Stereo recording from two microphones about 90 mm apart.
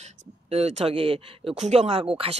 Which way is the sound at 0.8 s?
90° right.